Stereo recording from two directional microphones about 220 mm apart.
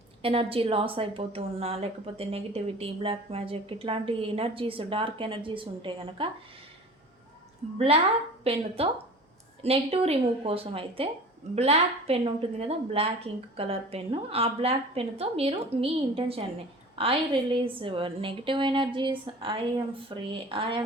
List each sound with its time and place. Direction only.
0.2 s a woman's voice: 25° right (ahead or behind)
8.4 s a woman's voice: 25° right (ahead or behind)